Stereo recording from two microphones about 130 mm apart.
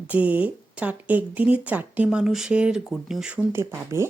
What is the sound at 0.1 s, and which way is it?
Speech, 10° right (ahead or behind).